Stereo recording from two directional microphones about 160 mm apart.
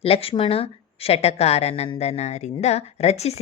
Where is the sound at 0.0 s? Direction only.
35° left (ahead or behind).